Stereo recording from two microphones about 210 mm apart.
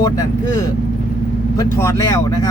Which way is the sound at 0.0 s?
15° left (ahead or behind).